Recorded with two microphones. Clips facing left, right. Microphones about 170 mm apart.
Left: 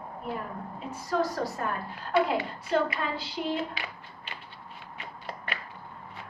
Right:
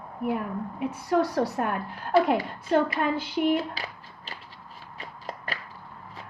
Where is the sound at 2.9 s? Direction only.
55° right (ahead or behind).